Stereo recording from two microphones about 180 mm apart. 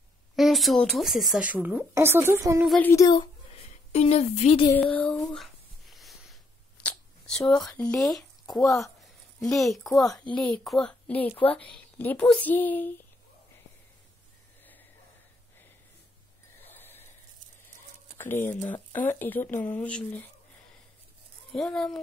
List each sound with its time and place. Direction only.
0.4 s speech: centre (ahead or behind); by 2.6 s 15° right (ahead or behind)
2.8 s a woman's voice: 15° left (ahead or behind)
3.1 s a woman's voice: 30° left (ahead or behind)
4.7 s a woman's voice: 5° left (ahead or behind)
5.3 s a sound: centre (ahead or behind)
6.8 s a woman's voice: 5° left (ahead or behind)
14.6 s a sound: 10° left (ahead or behind)
16.6 s a sound: 10° left (ahead or behind)
18.1 s a woman's voice: 10° left (ahead or behind)
21.5 s speech: 5° left (ahead or behind)